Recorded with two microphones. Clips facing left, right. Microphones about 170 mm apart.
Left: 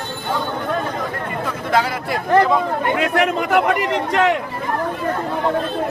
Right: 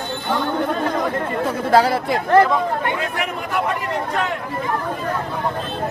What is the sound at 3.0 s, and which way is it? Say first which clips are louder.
Speech: left 7 dB; 80° left.